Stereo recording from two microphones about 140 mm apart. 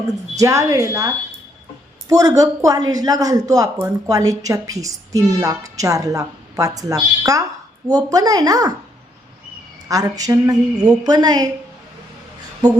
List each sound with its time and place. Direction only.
0.3 s speech: 20° right (ahead or behind)
9.9 s speech: 25° right (ahead or behind)